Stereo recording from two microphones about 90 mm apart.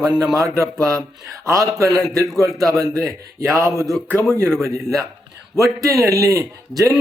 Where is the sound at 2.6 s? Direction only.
40° right (ahead or behind).